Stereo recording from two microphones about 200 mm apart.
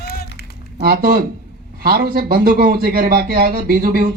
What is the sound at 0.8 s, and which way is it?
Speech, 50° right (ahead or behind).